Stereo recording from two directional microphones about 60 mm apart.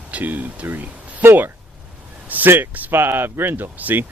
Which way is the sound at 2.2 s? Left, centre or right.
Right.